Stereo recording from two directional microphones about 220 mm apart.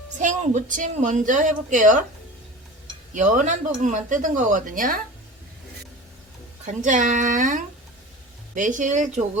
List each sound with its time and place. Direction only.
0.2 s a woman's voice: 35° right (ahead or behind)
3.2 s a woman's voice: 35° right (ahead or behind)
6.8 s a woman's voice: 35° right (ahead or behind)